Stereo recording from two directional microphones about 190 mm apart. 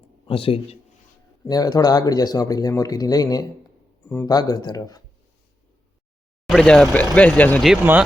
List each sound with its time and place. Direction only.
0.3 s speech: 30° left (ahead or behind)
1.5 s speech: 20° left (ahead or behind)
6.5 s speech: 5° left (ahead or behind)
7.7 s speech: 5° right (ahead or behind)